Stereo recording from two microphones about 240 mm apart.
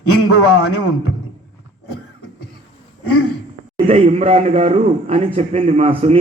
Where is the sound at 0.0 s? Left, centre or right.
Left.